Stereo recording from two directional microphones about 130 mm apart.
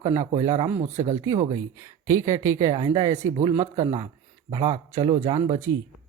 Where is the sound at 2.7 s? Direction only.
40° right (ahead or behind).